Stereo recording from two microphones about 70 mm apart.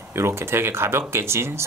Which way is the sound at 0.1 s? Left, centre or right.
Right.